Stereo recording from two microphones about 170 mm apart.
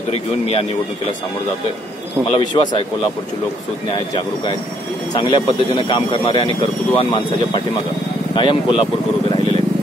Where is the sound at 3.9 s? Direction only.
30° left (ahead or behind).